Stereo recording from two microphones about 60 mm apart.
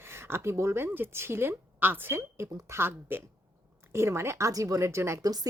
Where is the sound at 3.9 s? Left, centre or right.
Right.